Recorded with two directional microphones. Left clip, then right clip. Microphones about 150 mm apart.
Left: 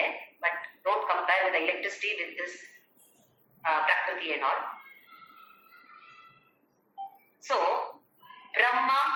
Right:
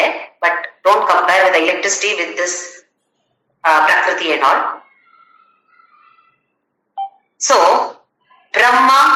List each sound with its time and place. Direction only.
0.0 s a sound: 90° right
3.6 s speech: 90° right
7.4 s speech: 90° right